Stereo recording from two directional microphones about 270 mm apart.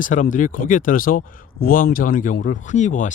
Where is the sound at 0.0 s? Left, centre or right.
Left.